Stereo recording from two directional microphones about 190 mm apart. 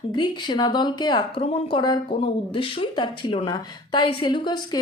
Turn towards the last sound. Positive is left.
turn(degrees=25)  # may be behind; listen again after turning